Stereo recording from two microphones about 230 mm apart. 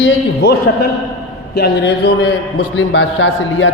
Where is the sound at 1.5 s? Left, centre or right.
Left.